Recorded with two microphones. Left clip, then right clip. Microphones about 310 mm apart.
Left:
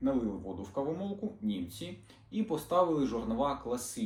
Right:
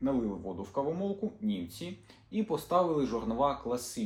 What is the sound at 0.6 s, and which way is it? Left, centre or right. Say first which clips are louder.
A man's voice: right 3 dB; centre.